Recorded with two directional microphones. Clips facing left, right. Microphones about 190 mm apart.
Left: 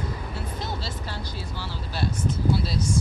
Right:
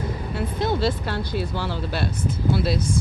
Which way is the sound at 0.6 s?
60° right (ahead or behind).